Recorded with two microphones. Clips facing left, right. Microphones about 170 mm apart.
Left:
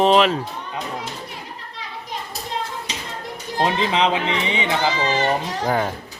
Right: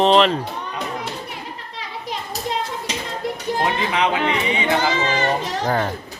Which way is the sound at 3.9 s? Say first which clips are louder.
Even; 25° left (ahead or behind).